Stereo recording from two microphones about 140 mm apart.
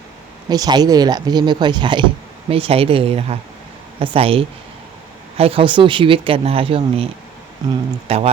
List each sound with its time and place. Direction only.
0.4 s speech: 30° right (ahead or behind)
7.6 s speech: 30° right (ahead or behind)
8.0 s speech: 45° right (ahead or behind)